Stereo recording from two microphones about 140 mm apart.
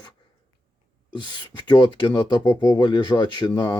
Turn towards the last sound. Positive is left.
turn(degrees=35)  # may be behind; listen again after turning